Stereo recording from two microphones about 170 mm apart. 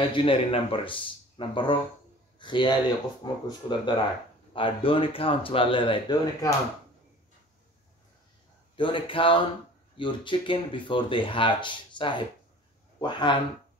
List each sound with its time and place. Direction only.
0.1 s speech: 30° left (ahead or behind)
8.7 s speech: 30° left (ahead or behind)